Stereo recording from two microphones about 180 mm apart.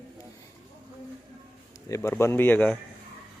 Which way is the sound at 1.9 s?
15° left (ahead or behind).